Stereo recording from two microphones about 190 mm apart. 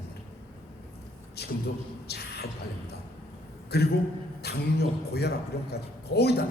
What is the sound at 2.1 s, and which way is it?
Speech, 60° left (ahead or behind).